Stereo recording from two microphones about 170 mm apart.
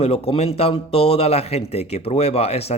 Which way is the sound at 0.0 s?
40° left (ahead or behind).